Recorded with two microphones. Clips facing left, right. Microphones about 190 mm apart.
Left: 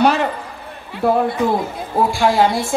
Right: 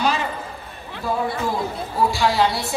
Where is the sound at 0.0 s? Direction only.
65° left (ahead or behind).